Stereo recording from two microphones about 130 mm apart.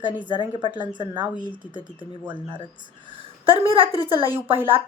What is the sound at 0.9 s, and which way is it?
Speech, 35° right (ahead or behind).